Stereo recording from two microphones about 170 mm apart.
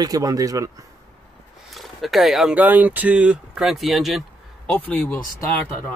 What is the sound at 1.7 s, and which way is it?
Speech, centre (ahead or behind).